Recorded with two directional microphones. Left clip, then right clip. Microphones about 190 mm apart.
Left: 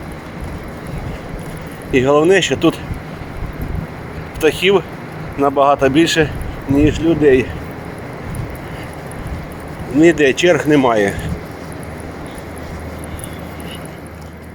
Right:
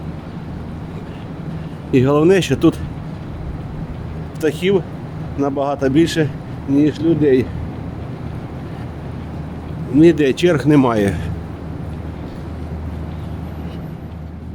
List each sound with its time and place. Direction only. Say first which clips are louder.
1.9 s speech: left 2 dB; 20° right (ahead or behind)
4.4 s speech: left 4 dB; 10° right (ahead or behind)
10.0 s speech: left 1 dB; 20° right (ahead or behind)